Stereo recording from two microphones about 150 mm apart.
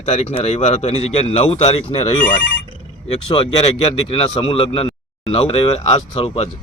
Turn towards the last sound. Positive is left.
turn(degrees=40)  # may be behind; listen again after turning